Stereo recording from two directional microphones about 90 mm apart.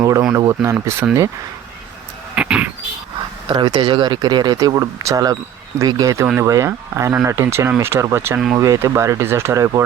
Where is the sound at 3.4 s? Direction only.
55° right (ahead or behind).